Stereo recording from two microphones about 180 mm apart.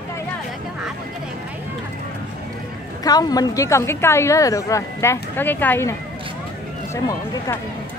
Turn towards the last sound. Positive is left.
turn(degrees=15)  # may be behind; listen again after turning